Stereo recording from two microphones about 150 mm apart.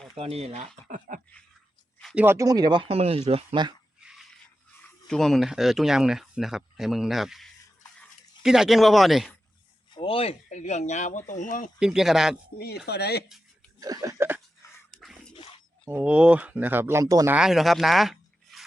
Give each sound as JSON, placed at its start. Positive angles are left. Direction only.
{"t": 0.2, "sound": "speech", "side_deg": -45}
{"t": 0.9, "sound": "a sound", "side_deg": -60}
{"t": 2.1, "sound": "speech", "side_deg": -15}
{"t": 5.0, "sound": "speech", "side_deg": 5}
{"t": 9.9, "sound": "speech", "side_deg": 35}
{"t": 11.8, "sound": "speech", "side_deg": -5}
{"t": 12.5, "sound": "speech", "side_deg": 90}
{"t": 13.7, "sound": "a sound", "side_deg": -25}
{"t": 14.8, "sound": "a sound", "side_deg": 0}
{"t": 15.4, "sound": "a sound", "side_deg": 35}
{"t": 15.9, "sound": "speech", "side_deg": -10}
{"t": 17.3, "sound": "speech", "side_deg": -5}